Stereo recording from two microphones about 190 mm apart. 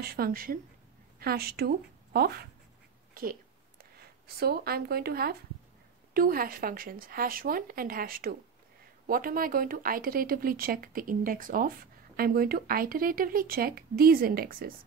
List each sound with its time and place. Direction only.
0.0 s a woman's voice: 55° right (ahead or behind)
3.2 s a sound: 50° right (ahead or behind)
6.1 s speech: 50° right (ahead or behind)